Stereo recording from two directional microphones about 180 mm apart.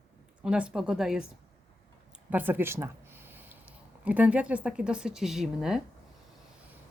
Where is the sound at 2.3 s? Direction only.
10° right (ahead or behind).